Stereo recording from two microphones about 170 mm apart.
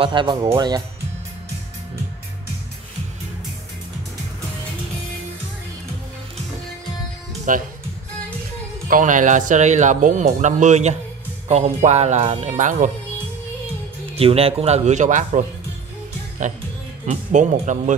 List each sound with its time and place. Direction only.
0.0 s speech: 30° right (ahead or behind)
7.5 s speech: 50° right (ahead or behind)
8.8 s speech: 50° right (ahead or behind)
14.1 s speech: 35° right (ahead or behind)
17.0 s speech: 45° right (ahead or behind)